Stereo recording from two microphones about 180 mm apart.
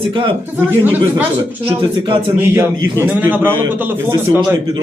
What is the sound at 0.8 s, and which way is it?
Speech, 10° right (ahead or behind).